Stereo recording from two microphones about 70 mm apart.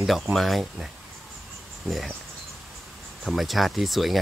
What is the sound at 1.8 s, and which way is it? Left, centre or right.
Speech, centre.